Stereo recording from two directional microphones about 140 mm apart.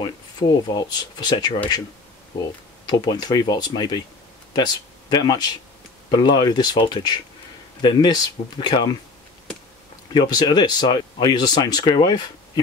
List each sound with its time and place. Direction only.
0.0 s speech: 30° left (ahead or behind)
2.9 s speech: 30° left (ahead or behind)
5.1 s speech: 30° left (ahead or behind)
10.1 s speech: 30° left (ahead or behind)